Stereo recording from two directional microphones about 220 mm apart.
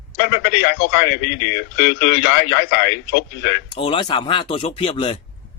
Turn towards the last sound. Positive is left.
turn(degrees=25)  # may be behind; listen again after turning